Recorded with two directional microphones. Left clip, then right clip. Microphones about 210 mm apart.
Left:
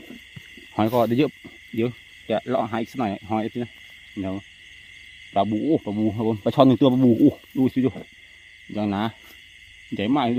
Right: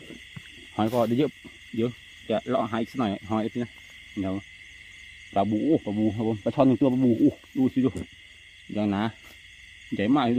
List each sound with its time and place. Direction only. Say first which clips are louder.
0.8 s speech: left 4 dB; 30° left (ahead or behind)
8.7 s speech: left 2 dB; 15° left (ahead or behind)